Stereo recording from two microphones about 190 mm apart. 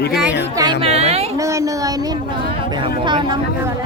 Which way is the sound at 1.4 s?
15° right (ahead or behind).